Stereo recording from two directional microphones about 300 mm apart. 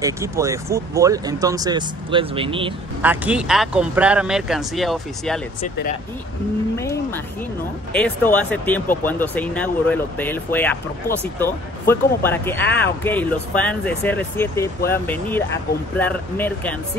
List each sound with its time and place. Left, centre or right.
0.0 s speech: centre
3.0 s speech: centre
5.6 s speech: left
6.8 s a sound: centre
7.9 s speech: centre